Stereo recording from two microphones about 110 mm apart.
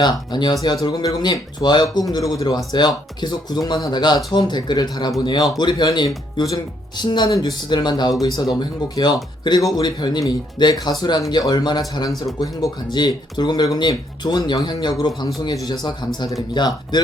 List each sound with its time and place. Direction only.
0.0 s speech: 40° left (ahead or behind)